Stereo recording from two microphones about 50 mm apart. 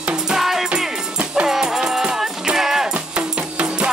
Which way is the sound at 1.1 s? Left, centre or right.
Right.